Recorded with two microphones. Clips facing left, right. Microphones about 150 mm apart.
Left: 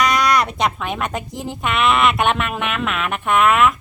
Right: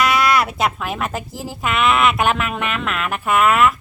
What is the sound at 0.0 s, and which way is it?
Speech, 5° right (ahead or behind).